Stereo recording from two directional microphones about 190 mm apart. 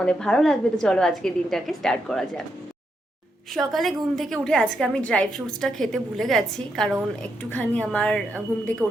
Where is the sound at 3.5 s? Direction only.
Centre (ahead or behind).